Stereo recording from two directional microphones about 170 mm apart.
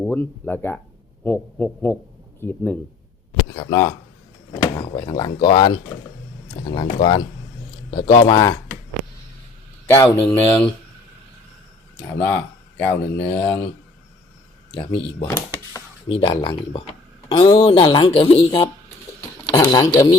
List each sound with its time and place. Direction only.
0.0 s speech: 10° left (ahead or behind); by 5.7 s 25° left (ahead or behind)
7.0 s speech: 25° left (ahead or behind)
10.2 s speech: 10° left (ahead or behind)
12.0 s speech: 10° left (ahead or behind)
15.3 s speech: 20° left (ahead or behind)
16.0 s speech: 35° left (ahead or behind)